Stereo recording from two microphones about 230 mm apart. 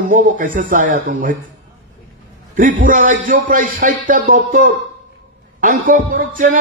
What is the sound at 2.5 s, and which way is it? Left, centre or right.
Speech, right.